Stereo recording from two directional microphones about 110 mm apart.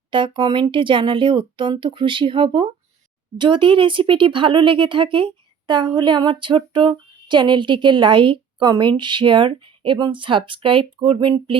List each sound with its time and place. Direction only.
0.1 s speech: 45° right (ahead or behind)